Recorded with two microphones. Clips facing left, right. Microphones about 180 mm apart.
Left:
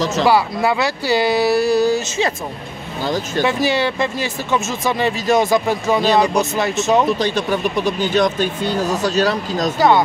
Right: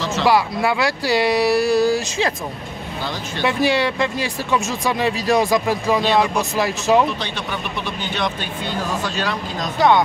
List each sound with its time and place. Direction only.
0.2 s speech: centre (ahead or behind)
3.4 s speech: centre (ahead or behind)
7.1 s speech: 40° left (ahead or behind)
9.8 s speech: 5° left (ahead or behind)